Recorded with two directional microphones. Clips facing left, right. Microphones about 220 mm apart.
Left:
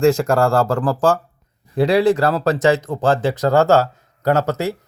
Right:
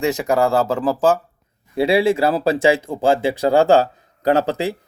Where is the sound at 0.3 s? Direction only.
20° right (ahead or behind).